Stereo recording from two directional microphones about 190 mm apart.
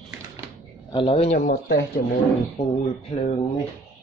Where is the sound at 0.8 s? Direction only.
25° left (ahead or behind).